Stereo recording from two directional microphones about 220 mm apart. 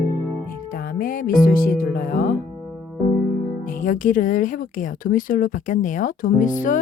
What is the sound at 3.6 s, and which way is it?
Speech, 40° left (ahead or behind).